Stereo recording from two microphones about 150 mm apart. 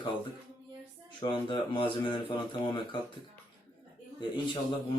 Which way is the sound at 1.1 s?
35° left (ahead or behind).